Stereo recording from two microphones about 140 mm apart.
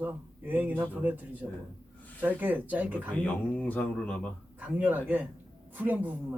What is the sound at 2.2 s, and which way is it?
Speech, 10° right (ahead or behind).